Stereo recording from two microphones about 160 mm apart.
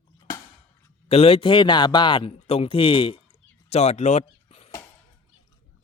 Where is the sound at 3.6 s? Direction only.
40° left (ahead or behind).